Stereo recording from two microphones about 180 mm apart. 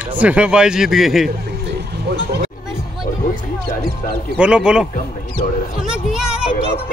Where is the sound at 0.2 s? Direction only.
5° right (ahead or behind).